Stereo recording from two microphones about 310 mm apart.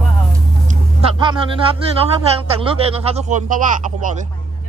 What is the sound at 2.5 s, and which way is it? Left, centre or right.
Speech, centre.